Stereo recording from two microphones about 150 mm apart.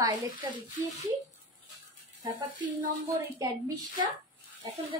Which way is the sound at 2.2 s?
25° right (ahead or behind).